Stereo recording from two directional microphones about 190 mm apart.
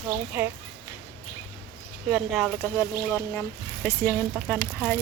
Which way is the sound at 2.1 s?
Centre (ahead or behind).